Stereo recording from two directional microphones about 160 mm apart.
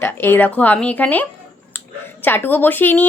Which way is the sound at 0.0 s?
15° left (ahead or behind).